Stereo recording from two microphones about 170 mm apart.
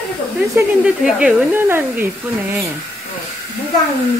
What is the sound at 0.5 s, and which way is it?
Speech, 5° right (ahead or behind).